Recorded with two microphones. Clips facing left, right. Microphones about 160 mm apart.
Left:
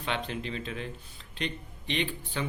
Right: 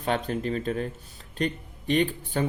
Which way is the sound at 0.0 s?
45° right (ahead or behind).